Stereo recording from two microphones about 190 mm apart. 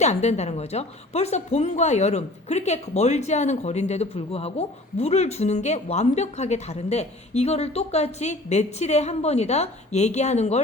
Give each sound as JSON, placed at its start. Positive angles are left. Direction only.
{"t": 0.0, "sound": "a woman's voice", "side_deg": 35}